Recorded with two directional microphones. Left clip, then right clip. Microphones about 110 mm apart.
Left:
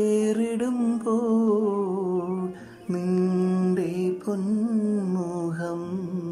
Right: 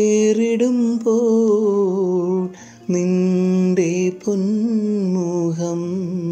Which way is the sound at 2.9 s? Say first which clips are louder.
Right 6 dB; 20° right (ahead or behind).